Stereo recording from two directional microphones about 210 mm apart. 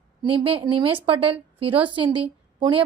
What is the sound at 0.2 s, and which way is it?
A woman's voice, 25° right (ahead or behind).